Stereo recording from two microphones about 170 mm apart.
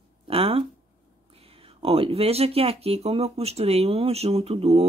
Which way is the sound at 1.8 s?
35° right (ahead or behind).